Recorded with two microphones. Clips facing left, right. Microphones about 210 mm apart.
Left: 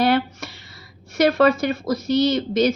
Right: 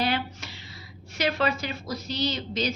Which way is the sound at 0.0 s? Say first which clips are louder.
Left 9 dB; 50° left (ahead or behind).